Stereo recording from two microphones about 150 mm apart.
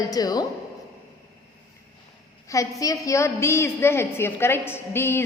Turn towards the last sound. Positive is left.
turn(degrees=15)  # may be behind; listen again after turning